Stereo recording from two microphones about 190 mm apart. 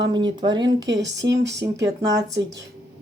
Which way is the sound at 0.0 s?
25° right (ahead or behind).